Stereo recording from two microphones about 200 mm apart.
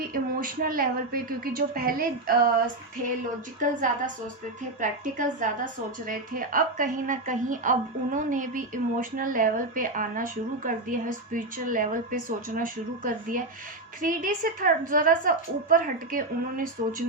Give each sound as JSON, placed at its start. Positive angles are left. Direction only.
{"t": 0.1, "sound": "a woman's voice", "side_deg": -45}
{"t": 3.6, "sound": "a woman's voice", "side_deg": -40}